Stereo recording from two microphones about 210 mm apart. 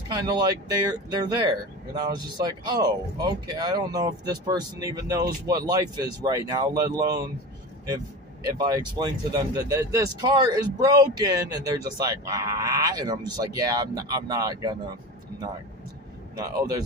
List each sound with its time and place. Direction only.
0.3 s speech: 20° right (ahead or behind)
8.5 s speech: 15° right (ahead or behind)
16.3 s speech: 15° right (ahead or behind)